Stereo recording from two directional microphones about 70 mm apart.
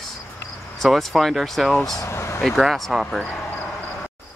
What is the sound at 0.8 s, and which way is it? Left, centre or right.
Speech, centre.